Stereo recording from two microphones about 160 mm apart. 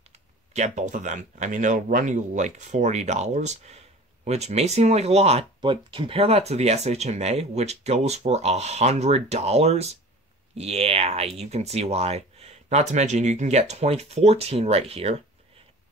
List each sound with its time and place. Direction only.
0.5 s speech: 50° right (ahead or behind)